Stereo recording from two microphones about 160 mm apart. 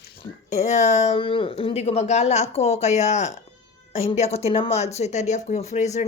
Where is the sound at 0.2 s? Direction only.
45° left (ahead or behind).